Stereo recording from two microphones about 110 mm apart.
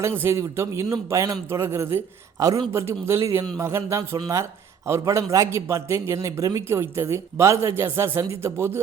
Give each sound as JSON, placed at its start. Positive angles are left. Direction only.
{"t": 0.2, "sound": "a man's voice", "side_deg": -25}